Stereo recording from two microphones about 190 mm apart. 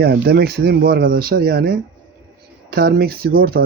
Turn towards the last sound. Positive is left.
turn(degrees=-50)  # may be behind; listen again after turning